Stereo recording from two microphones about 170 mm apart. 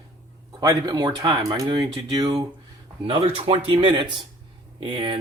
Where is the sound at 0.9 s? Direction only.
25° right (ahead or behind).